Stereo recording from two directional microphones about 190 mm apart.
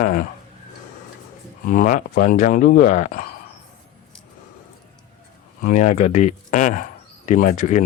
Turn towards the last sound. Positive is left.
turn(degrees=40)  # may be behind; listen again after turning